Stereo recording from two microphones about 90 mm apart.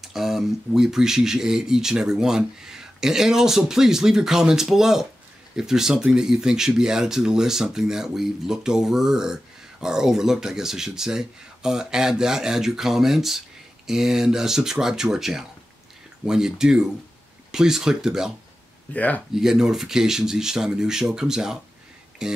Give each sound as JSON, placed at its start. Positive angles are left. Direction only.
{"t": 0.0, "sound": "speech", "side_deg": -5}
{"t": 18.9, "sound": "speech", "side_deg": 15}
{"t": 19.3, "sound": "speech", "side_deg": -5}